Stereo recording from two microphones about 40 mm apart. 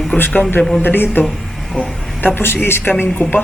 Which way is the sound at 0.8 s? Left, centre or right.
Left.